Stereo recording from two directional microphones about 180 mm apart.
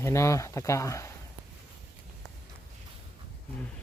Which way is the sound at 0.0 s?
15° left (ahead or behind).